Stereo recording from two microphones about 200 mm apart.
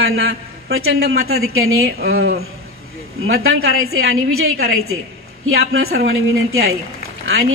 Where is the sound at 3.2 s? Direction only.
90° right.